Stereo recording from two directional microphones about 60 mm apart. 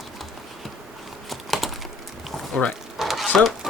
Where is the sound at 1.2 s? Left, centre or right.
Centre.